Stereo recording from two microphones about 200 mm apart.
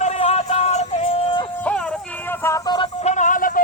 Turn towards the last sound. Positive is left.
turn(degrees=40)  # may be behind; listen again after turning